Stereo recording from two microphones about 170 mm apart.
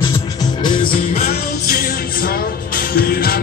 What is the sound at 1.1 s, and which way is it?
Music, 40° left (ahead or behind).